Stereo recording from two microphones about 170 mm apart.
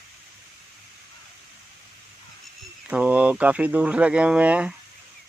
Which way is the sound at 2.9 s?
10° right (ahead or behind).